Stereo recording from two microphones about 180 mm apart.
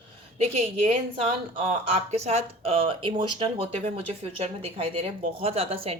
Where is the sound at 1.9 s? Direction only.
35° right (ahead or behind).